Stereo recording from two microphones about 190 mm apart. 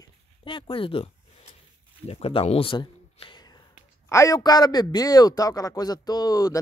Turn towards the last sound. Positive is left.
turn(degrees=20)  # may be behind; listen again after turning